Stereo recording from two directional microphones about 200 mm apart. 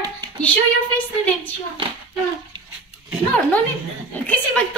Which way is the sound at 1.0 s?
5° left (ahead or behind).